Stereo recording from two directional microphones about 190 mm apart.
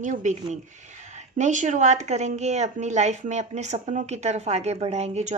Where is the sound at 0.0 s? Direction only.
40° right (ahead or behind).